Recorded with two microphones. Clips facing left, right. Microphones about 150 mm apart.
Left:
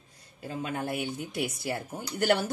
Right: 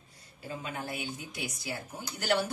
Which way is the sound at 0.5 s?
45° left (ahead or behind).